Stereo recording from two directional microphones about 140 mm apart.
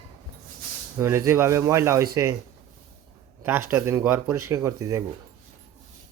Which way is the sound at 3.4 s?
15° right (ahead or behind).